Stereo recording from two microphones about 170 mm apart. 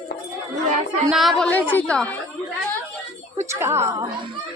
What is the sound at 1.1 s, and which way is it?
A woman's voice, centre (ahead or behind).